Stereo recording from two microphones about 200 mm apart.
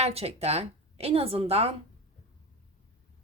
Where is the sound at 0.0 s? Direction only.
30° right (ahead or behind).